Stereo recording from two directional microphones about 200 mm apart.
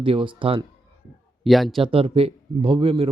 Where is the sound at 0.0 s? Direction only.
25° right (ahead or behind).